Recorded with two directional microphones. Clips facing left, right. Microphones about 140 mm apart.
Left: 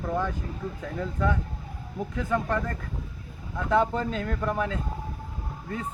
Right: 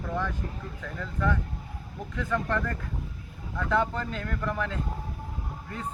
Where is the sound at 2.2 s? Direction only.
20° left (ahead or behind).